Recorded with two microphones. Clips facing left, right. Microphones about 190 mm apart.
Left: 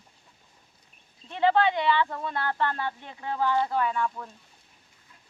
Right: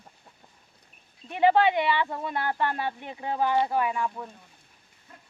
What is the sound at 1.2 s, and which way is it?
Speech, 15° right (ahead or behind).